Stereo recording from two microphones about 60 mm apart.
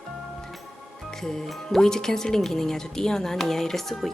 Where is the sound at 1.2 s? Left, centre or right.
Centre.